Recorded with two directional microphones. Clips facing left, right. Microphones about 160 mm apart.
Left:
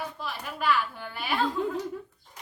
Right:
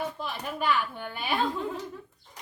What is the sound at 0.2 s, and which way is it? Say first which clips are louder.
A woman's voice: right 2 dB; 20° right (ahead or behind).